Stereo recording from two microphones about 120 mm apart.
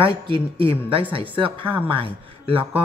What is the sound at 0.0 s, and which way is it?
A woman's voice, 45° right (ahead or behind).